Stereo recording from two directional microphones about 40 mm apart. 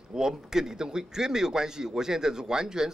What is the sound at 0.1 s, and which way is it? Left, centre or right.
Speech, centre.